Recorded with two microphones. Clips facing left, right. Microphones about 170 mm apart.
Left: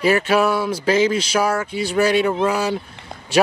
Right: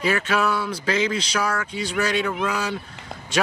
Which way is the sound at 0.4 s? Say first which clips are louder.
Left 5 dB; 10° left (ahead or behind).